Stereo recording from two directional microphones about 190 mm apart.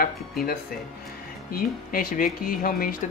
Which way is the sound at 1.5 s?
50° left (ahead or behind).